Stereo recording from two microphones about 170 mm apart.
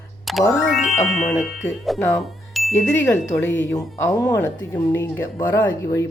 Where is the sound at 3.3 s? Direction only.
20° left (ahead or behind).